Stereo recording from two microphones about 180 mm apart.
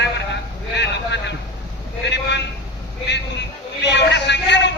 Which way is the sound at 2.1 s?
70° left (ahead or behind).